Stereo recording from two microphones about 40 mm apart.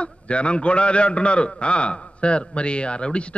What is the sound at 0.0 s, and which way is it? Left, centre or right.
A man's voice, left.